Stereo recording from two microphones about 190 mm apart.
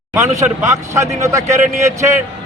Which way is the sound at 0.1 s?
15° right (ahead or behind).